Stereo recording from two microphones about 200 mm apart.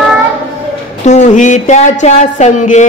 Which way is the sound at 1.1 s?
35° left (ahead or behind).